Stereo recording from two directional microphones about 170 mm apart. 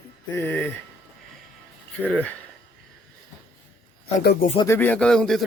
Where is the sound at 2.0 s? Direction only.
10° left (ahead or behind).